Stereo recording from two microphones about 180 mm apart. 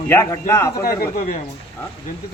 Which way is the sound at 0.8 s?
55° left (ahead or behind).